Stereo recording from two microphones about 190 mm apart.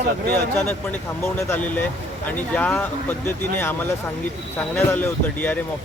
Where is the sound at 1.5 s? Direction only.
10° left (ahead or behind).